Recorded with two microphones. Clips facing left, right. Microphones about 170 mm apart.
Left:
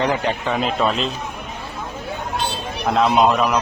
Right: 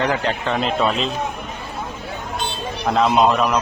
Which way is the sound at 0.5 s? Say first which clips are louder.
Right 1 dB; centre (ahead or behind).